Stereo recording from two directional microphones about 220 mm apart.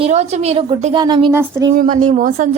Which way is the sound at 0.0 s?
30° right (ahead or behind).